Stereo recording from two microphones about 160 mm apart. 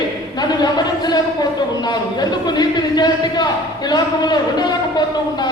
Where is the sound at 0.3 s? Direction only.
25° left (ahead or behind).